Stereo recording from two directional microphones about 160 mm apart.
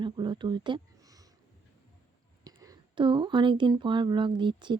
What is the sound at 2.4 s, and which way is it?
Speech, 25° right (ahead or behind).